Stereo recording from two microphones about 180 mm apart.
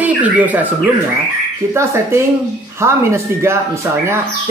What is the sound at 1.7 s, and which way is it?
Speech, 15° right (ahead or behind).